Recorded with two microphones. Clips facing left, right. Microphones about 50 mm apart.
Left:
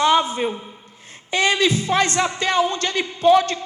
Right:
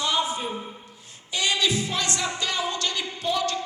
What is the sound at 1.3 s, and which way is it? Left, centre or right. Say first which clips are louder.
Speech: left 6 dB; left.